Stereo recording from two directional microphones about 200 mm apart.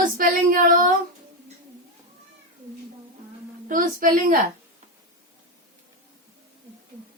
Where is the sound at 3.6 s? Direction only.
40° right (ahead or behind).